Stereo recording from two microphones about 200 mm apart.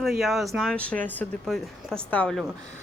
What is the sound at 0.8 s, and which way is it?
A woman's voice, 10° left (ahead or behind).